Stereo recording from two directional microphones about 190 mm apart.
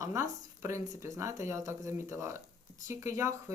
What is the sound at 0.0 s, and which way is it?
Speech, 15° right (ahead or behind).